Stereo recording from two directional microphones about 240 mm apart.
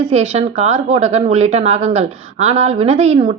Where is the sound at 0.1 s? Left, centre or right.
Right.